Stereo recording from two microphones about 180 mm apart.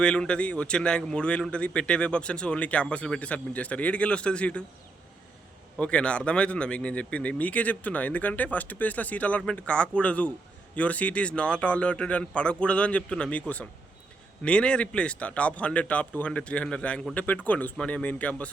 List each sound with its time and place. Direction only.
0.0 s speech: 5° left (ahead or behind)
5.7 s speech: 5° left (ahead or behind)